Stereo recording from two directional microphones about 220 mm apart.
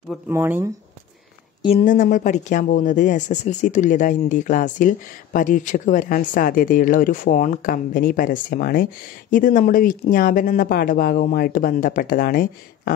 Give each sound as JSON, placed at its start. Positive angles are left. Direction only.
{"t": 0.3, "sound": "speech", "side_deg": -10}
{"t": 1.6, "sound": "speech", "side_deg": 30}